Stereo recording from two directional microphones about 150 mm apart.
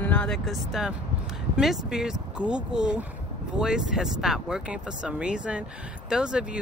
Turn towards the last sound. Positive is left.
turn(degrees=-5)  # may be behind; listen again after turning